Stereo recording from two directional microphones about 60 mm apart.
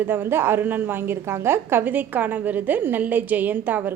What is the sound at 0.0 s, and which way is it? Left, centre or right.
A woman's voice, right.